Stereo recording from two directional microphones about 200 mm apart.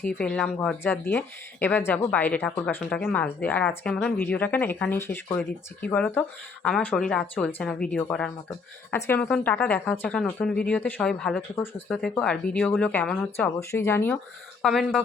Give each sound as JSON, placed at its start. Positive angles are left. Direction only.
{"t": 0.2, "sound": "speech", "side_deg": 5}
{"t": 14.6, "sound": "speech", "side_deg": 0}